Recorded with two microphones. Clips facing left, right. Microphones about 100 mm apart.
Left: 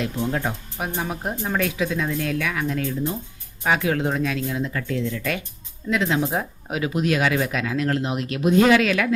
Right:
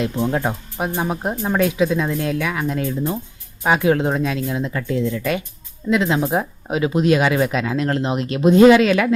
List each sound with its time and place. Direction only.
0.0 s speech: 30° right (ahead or behind)